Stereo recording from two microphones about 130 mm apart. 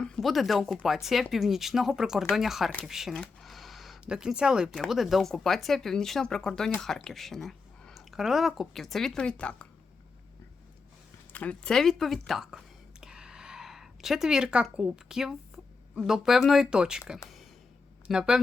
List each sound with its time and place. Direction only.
0.0 s speech: 5° left (ahead or behind)
11.3 s speech: 10° left (ahead or behind); by 18.3 s 5° right (ahead or behind)